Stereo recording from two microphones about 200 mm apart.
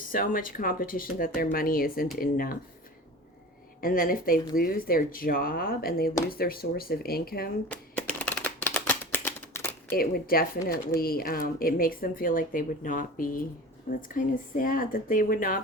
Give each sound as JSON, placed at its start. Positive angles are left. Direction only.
{"t": 0.1, "sound": "speech", "side_deg": 45}
{"t": 3.8, "sound": "speech", "side_deg": 45}
{"t": 7.7, "sound": "typewriter", "side_deg": 5}
{"t": 9.9, "sound": "speech", "side_deg": 45}